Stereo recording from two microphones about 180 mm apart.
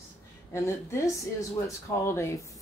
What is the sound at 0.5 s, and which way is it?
Speech, 15° left (ahead or behind).